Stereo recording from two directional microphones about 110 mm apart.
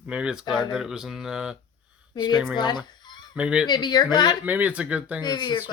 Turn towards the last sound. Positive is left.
turn(degrees=40)  # may be behind; listen again after turning